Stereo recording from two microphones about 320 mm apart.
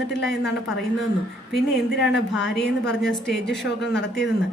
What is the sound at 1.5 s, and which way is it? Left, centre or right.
A woman's voice, centre.